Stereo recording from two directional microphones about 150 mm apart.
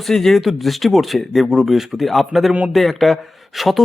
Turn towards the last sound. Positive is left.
turn(degrees=0)  # may be behind; listen again after turning